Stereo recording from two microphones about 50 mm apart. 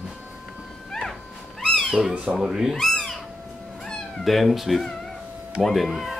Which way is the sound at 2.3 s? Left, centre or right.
Centre.